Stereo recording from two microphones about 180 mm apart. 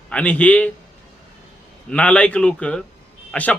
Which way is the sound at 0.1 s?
5° left (ahead or behind).